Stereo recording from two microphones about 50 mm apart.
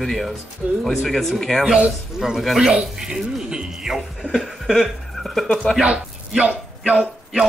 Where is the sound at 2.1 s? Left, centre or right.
Centre.